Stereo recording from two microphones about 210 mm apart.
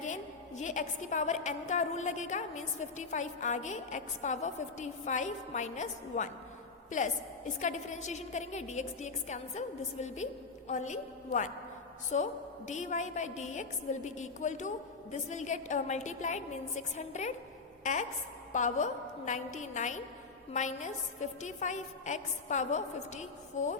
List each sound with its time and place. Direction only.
0.0 s a woman's voice: 35° left (ahead or behind)